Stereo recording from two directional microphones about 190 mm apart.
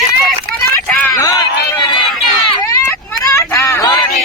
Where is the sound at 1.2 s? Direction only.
15° left (ahead or behind).